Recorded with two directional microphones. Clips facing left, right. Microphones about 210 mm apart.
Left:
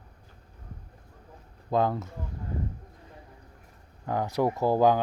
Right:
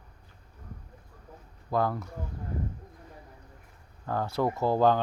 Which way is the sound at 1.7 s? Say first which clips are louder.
Left 2 dB; 20° left (ahead or behind).